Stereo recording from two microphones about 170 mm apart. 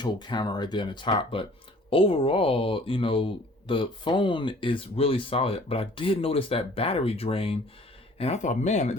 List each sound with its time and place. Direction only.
0.0 s speech: 25° left (ahead or behind); by 9.0 s 45° left (ahead or behind)